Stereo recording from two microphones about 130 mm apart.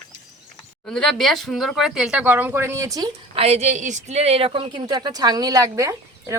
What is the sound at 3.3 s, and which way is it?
Speech, 50° right (ahead or behind).